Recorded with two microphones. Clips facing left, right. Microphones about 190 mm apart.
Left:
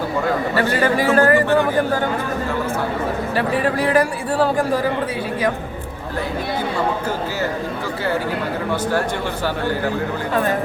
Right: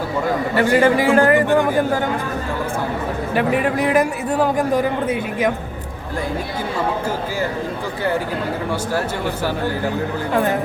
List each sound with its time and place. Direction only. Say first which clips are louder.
0.5 s a man's voice: right 6 dB; 15° right (ahead or behind)
3.3 s speech: right 2 dB; 20° right (ahead or behind)